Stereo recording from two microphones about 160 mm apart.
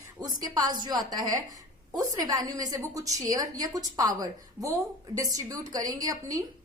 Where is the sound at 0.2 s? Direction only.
25° right (ahead or behind).